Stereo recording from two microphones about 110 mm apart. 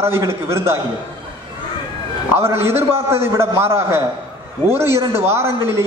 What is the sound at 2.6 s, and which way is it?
Speech, 65° right (ahead or behind).